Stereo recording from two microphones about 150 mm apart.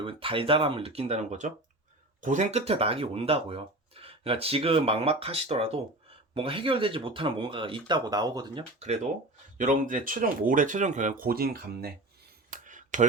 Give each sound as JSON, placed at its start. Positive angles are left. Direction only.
{"t": 0.0, "sound": "speech", "side_deg": -35}
{"t": 9.6, "sound": "speech", "side_deg": -60}
{"t": 12.5, "sound": "a sound", "side_deg": -60}